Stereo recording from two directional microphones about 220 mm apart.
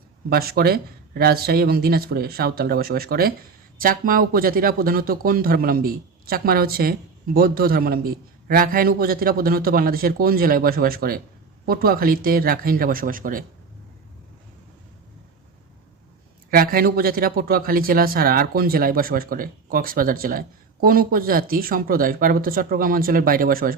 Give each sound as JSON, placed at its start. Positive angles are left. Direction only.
{"t": 0.3, "sound": "speech", "side_deg": -45}
{"t": 16.5, "sound": "speech", "side_deg": -40}